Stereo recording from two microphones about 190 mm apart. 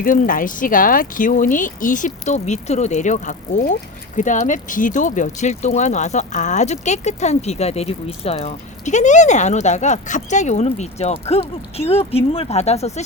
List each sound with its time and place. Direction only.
0.0 s speech: 45° left (ahead or behind)